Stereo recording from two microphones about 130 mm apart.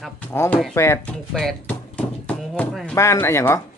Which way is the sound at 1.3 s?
5° left (ahead or behind).